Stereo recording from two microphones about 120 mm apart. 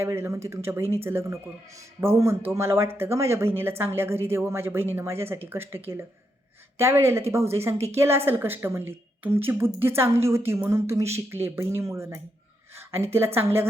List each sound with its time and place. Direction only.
0.0 s a woman's voice: 20° right (ahead or behind)